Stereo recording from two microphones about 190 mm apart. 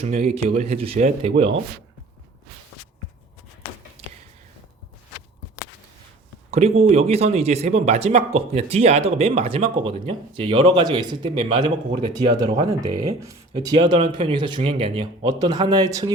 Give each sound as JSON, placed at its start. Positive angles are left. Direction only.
{"t": 0.0, "sound": "speech", "side_deg": -35}
{"t": 6.5, "sound": "speech", "side_deg": -35}